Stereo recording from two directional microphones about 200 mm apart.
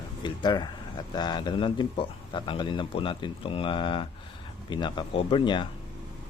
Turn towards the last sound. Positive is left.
turn(degrees=25)  # may be behind; listen again after turning